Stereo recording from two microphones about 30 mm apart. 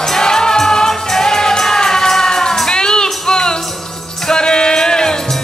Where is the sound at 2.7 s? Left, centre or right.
Left.